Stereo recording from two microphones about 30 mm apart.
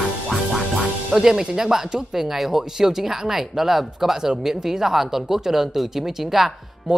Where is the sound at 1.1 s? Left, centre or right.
Centre.